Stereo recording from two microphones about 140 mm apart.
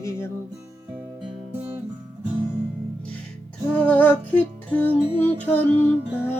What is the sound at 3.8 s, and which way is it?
Music, 10° left (ahead or behind).